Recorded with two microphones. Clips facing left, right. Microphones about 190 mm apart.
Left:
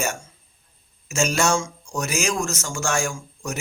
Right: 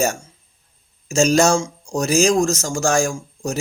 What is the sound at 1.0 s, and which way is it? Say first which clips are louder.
A man's voice: right 7 dB; 35° right (ahead or behind).